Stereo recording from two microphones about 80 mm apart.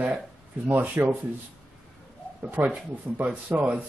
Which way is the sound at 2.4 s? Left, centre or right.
Centre.